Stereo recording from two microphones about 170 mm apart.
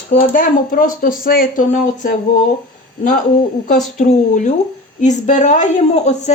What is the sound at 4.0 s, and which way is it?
Speech, 45° left (ahead or behind).